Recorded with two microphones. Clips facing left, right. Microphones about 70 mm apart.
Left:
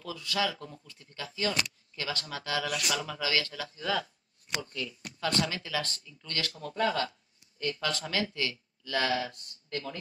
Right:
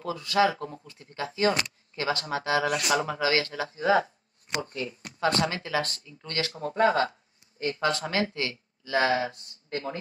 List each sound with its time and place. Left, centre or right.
0.0 s speech: right